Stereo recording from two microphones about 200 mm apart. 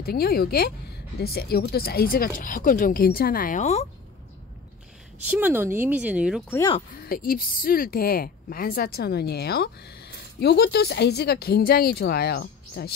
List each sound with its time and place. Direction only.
0.0 s a woman's voice: 50° left (ahead or behind)
5.3 s speech: 10° right (ahead or behind)
7.1 s a woman's voice: 45° left (ahead or behind)